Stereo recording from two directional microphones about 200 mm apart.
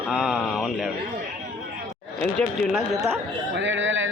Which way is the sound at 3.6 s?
70° right (ahead or behind).